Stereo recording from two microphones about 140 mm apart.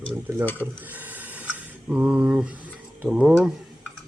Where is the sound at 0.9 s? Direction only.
10° right (ahead or behind).